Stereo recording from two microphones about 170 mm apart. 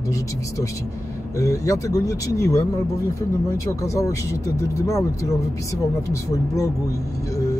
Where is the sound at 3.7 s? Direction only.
20° left (ahead or behind).